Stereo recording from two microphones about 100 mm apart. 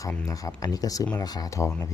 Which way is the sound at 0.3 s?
35° left (ahead or behind).